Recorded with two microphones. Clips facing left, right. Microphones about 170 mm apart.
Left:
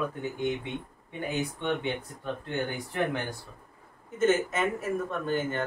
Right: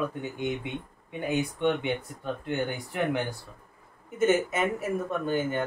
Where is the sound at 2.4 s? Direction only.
10° right (ahead or behind).